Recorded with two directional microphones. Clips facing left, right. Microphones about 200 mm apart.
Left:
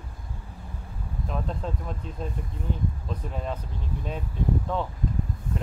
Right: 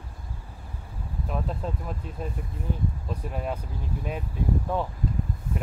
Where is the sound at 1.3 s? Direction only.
5° right (ahead or behind).